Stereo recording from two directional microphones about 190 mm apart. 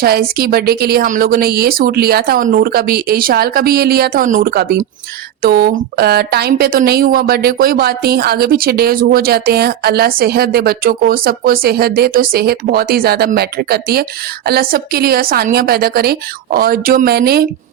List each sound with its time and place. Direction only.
0.0 s a woman's voice: 55° right (ahead or behind)